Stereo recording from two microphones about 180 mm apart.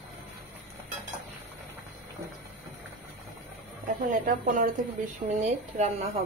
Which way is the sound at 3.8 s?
50° right (ahead or behind).